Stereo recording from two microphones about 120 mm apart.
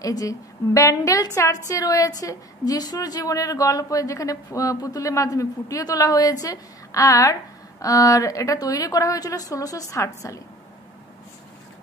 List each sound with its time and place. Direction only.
0.0 s a woman's voice: 30° left (ahead or behind)